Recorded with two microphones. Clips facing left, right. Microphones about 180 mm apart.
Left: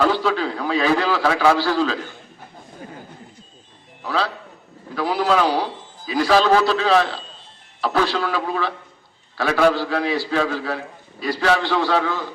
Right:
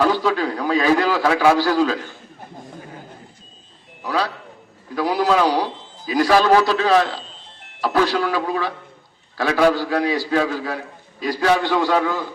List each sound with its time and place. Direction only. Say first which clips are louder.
0.0 s a man's voice: right 1 dB; 15° right (ahead or behind)
4.0 s a man's voice: right 1 dB; 15° right (ahead or behind)